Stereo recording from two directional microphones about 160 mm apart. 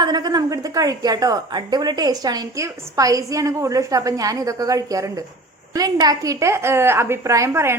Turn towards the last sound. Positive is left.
turn(degrees=-15)  # may be behind; listen again after turning